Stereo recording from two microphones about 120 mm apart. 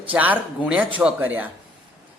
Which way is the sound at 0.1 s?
15° right (ahead or behind).